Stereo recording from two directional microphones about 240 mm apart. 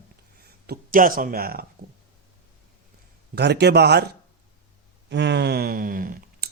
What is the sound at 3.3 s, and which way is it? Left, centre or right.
Speech, right.